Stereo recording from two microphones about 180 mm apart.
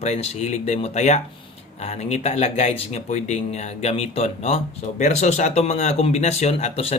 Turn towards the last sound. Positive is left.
turn(degrees=35)  # may be behind; listen again after turning